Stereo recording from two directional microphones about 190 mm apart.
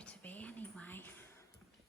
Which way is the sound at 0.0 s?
5° left (ahead or behind).